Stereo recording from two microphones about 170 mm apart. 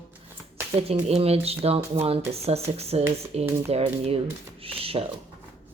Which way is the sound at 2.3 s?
40° right (ahead or behind).